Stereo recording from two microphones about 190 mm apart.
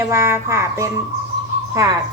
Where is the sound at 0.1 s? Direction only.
15° right (ahead or behind).